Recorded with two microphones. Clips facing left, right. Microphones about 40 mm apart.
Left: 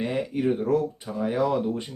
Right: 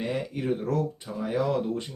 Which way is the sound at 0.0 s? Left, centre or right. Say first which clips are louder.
Left 4 dB; centre.